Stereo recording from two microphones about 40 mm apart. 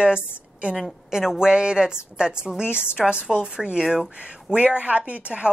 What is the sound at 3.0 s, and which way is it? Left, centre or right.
Speech, centre.